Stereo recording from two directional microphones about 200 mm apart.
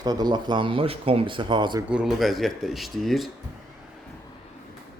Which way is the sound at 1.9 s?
5° right (ahead or behind).